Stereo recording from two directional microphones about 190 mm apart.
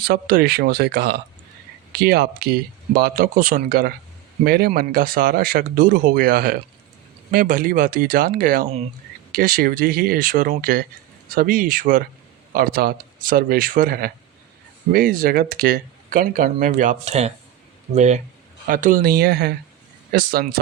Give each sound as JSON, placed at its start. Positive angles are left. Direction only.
{"t": 0.0, "sound": "speech", "side_deg": -50}